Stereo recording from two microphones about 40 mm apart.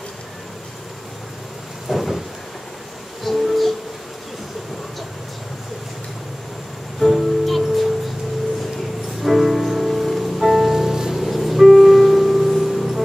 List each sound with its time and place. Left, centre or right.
1.9 s rain: centre
3.3 s music: centre
7.0 s music: centre
9.2 s music: centre
11.2 s music: centre